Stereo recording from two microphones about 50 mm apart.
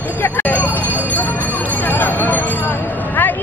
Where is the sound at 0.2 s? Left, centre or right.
Left.